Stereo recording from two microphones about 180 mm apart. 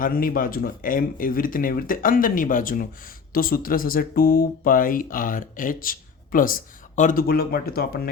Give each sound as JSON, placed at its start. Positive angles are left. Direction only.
{"t": 0.0, "sound": "speech", "side_deg": 50}